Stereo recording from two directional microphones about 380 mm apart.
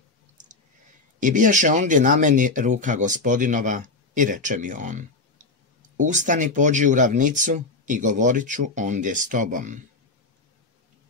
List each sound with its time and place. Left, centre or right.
1.2 s speech: centre